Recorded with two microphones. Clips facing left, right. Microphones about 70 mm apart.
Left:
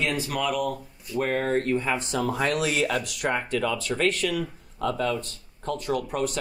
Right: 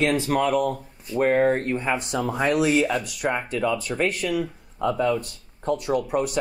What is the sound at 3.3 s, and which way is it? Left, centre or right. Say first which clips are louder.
Speech: right 2 dB; centre.